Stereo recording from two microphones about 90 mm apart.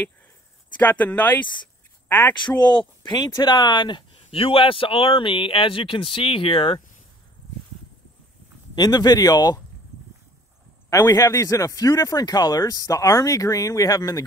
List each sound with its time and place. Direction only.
0.7 s speech: 20° left (ahead or behind)
3.1 s speech: 55° left (ahead or behind); by 6.8 s 75° left (ahead or behind)
8.7 s speech: 50° left (ahead or behind)
10.9 s speech: 45° left (ahead or behind)